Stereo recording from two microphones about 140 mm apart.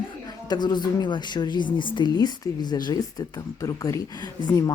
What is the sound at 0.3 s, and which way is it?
A woman's voice, 30° left (ahead or behind).